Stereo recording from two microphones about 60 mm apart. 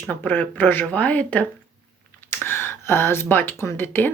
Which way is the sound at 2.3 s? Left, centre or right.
Left.